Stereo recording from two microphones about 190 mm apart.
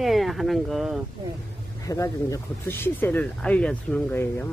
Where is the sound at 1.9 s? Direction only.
15° left (ahead or behind).